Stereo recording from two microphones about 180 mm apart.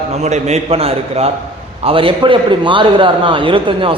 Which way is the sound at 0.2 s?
40° right (ahead or behind).